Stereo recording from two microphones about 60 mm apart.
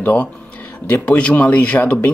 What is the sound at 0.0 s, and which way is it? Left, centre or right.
Speech, left.